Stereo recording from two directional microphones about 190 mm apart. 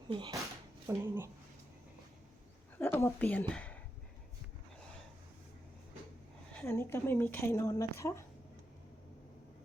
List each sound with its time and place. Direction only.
0.1 s speech: 20° right (ahead or behind)
2.7 s speech: 10° left (ahead or behind)
6.7 s speech: 15° left (ahead or behind)